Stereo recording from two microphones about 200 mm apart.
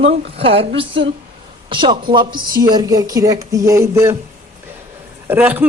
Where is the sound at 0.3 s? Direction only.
30° right (ahead or behind).